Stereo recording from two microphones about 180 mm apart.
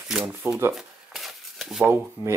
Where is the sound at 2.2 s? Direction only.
20° right (ahead or behind).